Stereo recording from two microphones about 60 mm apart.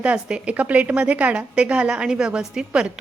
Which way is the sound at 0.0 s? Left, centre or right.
Centre.